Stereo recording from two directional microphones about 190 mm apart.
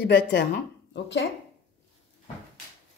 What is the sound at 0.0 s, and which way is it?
Speech, 65° left (ahead or behind).